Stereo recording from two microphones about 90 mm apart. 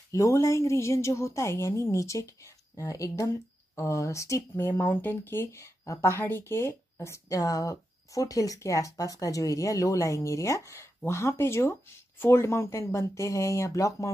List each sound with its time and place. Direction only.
0.1 s speech: 35° left (ahead or behind)